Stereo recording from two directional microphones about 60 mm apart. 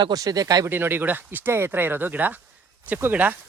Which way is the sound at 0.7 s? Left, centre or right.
Right.